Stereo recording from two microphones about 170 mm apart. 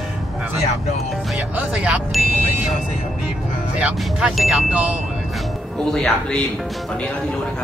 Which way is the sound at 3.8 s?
5° right (ahead or behind).